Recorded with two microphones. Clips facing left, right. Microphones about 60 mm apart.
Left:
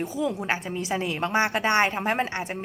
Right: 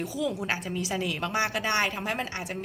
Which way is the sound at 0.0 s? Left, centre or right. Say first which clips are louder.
Left 3 dB; left.